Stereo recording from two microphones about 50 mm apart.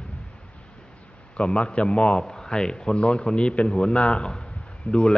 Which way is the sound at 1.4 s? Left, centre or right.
Left.